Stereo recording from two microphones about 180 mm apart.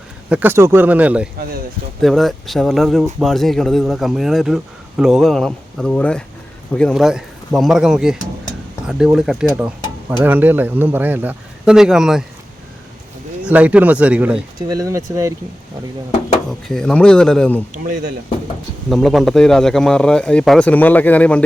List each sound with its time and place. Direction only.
0.3 s speech: 10° right (ahead or behind)
1.4 s speech: 55° right (ahead or behind)
2.0 s speech: centre (ahead or behind)
13.4 s speech: 10° right (ahead or behind)
14.7 s speech: 20° right (ahead or behind)
16.5 s speech: 5° left (ahead or behind)
18.9 s speech: centre (ahead or behind)